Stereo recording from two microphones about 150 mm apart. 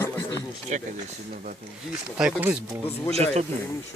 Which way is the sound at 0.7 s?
55° right (ahead or behind).